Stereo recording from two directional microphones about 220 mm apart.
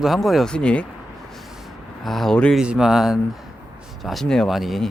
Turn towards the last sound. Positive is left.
turn(degrees=0)  # may be behind; listen again after turning